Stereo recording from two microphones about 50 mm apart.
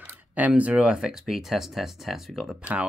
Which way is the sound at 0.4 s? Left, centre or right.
Right.